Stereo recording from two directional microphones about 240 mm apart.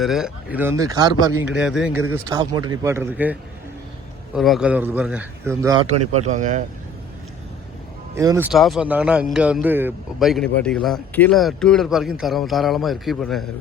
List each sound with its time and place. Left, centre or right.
0.0 s speech: centre
1.5 s a man's voice: centre
4.4 s a man's voice: centre
6.1 s speech: right
8.1 s a man's voice: centre